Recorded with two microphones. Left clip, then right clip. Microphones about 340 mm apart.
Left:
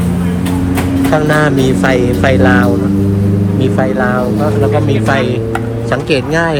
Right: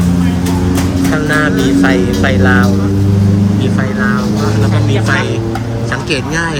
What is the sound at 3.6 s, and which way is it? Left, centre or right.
Speech, centre.